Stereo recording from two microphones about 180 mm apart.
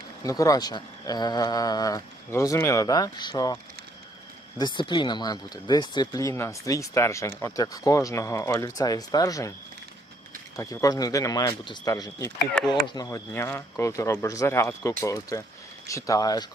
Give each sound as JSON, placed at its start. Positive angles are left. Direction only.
{"t": 0.2, "sound": "speech", "side_deg": 20}
{"t": 10.6, "sound": "speech", "side_deg": 20}
{"t": 12.6, "sound": "speech", "side_deg": 5}
{"t": 12.9, "sound": "speech", "side_deg": 20}